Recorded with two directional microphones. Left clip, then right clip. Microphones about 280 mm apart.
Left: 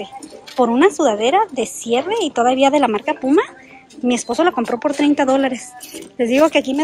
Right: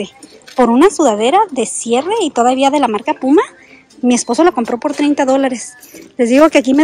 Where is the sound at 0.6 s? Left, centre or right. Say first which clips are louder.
Right 4 dB; centre.